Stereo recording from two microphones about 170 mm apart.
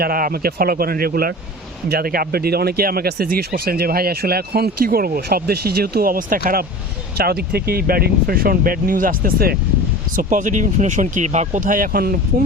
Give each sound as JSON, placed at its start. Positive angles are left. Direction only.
{"t": 0.0, "sound": "speech", "side_deg": -60}
{"t": 10.2, "sound": "speech", "side_deg": -50}